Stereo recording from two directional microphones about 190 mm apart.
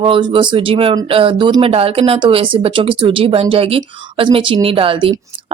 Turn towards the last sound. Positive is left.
turn(degrees=-30)  # may be behind; listen again after turning